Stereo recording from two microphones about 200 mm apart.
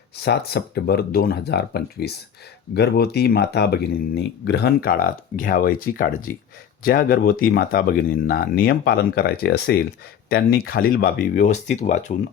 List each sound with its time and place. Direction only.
0.2 s speech: 55° left (ahead or behind); by 12.1 s 35° left (ahead or behind)